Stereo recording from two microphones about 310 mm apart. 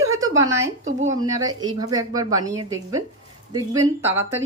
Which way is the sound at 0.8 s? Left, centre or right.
Right.